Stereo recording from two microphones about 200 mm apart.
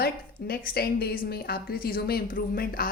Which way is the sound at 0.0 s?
50° left (ahead or behind).